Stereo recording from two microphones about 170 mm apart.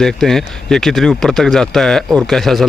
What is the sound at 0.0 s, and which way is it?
Speech, 5° left (ahead or behind).